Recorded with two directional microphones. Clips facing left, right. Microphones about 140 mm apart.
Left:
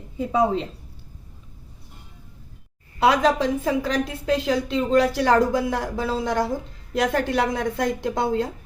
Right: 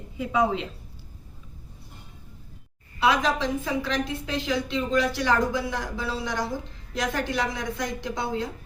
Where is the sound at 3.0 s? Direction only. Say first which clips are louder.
Left 5 dB; 45° left (ahead or behind).